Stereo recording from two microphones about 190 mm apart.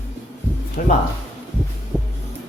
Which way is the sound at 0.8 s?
45° left (ahead or behind).